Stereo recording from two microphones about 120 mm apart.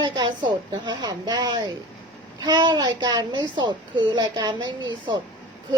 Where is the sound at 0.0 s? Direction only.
40° right (ahead or behind).